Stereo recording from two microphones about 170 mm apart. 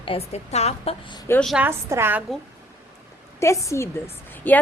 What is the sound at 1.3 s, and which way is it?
Speech, 5° left (ahead or behind).